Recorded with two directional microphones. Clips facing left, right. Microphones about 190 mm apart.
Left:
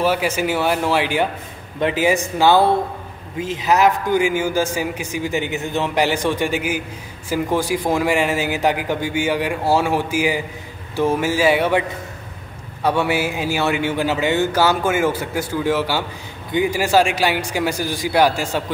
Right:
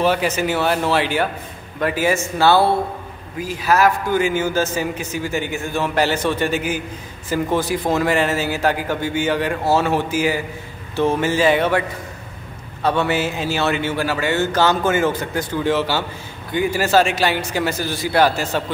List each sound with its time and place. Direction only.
0.0 s a man's voice: 10° left (ahead or behind)
12.8 s a man's voice: 10° left (ahead or behind)